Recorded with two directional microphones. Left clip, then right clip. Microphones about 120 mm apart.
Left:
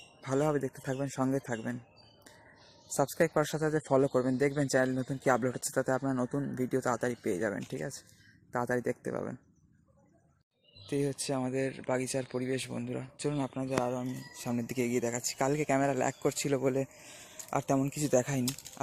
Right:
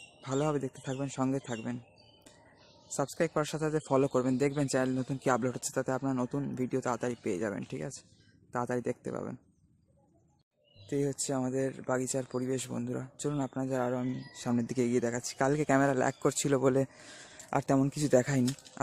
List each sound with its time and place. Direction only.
0.2 s speech: 15° right (ahead or behind)
2.9 s speech: centre (ahead or behind)
4.0 s speech: 25° right (ahead or behind)
10.8 s speech: 20° right (ahead or behind)
11.1 s speech: 35° right (ahead or behind)
13.6 s speech: 40° right (ahead or behind)